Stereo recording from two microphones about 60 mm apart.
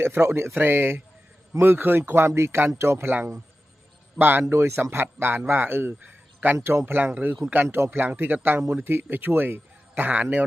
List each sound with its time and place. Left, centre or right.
0.0 s speech: right
0.5 s a man's voice: right
4.2 s a man's voice: right
4.5 s a man's voice: right